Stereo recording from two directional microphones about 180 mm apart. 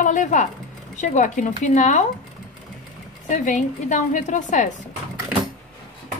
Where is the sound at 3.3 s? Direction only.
45° left (ahead or behind).